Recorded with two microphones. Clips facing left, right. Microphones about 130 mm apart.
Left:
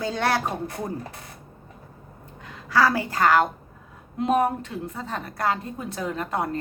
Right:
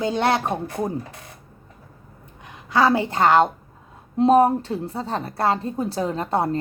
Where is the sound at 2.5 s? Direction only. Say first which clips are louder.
Right 3 dB; 20° right (ahead or behind).